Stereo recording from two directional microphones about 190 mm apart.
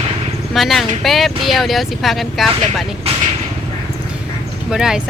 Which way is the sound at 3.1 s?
30° right (ahead or behind).